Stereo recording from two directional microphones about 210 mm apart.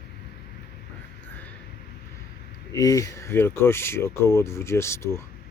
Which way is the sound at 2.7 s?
15° left (ahead or behind).